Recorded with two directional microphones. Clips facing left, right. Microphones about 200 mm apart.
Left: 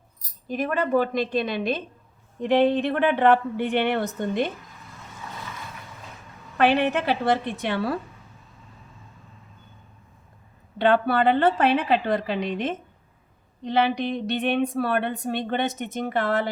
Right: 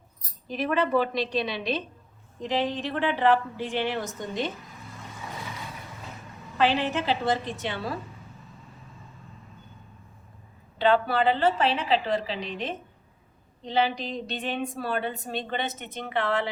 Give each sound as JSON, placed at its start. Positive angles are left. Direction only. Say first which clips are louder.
{"t": 0.4, "sound": "a woman's voice", "louder": "left 1 dB", "side_deg": 45}
{"t": 2.4, "sound": "a woman's voice", "louder": "left 8 dB", "side_deg": 60}
{"t": 6.6, "sound": "a woman's voice", "louder": "left 4 dB", "side_deg": 60}
{"t": 10.8, "sound": "a woman's voice", "louder": "left 2 dB", "side_deg": 55}
{"t": 13.7, "sound": "a woman's voice", "louder": "left 4 dB", "side_deg": 60}